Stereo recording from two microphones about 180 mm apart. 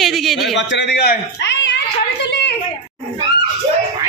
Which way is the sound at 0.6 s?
75° left (ahead or behind).